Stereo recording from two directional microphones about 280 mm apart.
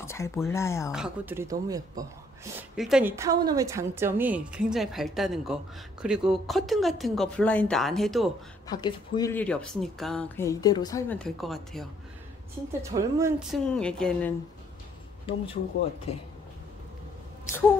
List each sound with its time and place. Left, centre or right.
0.0 s speech: centre
0.9 s a woman's voice: centre
8.6 s speech: centre
12.9 s a woman's voice: centre
16.1 s speech: left